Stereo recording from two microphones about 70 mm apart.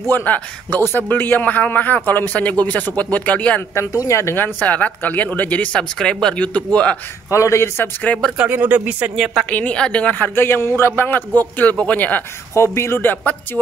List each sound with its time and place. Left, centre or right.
0.1 s a man's voice: left
3.9 s speech: left
4.4 s a man's voice: left
7.2 s a man's voice: left
8.4 s speech: right
9.1 s a woman's voice: centre
9.5 s a man's voice: centre
12.5 s a man's voice: left